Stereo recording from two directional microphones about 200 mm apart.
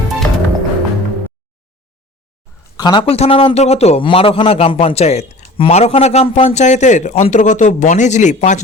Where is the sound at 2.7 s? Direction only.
20° left (ahead or behind).